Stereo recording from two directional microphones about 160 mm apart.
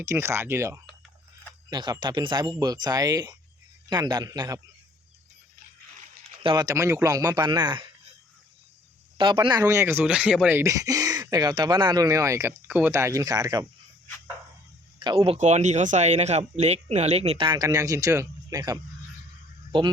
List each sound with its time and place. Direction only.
0.0 s speech: 15° right (ahead or behind)
1.7 s speech: 25° right (ahead or behind)
6.4 s speech: 30° right (ahead or behind)
9.1 s speech: 30° right (ahead or behind)
9.6 s speech: 15° right (ahead or behind)
10.6 s speech: 20° right (ahead or behind)
14.9 s speech: 30° right (ahead or behind)